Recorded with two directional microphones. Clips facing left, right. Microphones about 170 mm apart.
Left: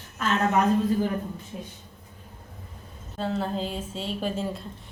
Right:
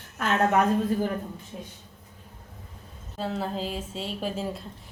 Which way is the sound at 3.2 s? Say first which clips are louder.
Left 2 dB; centre (ahead or behind).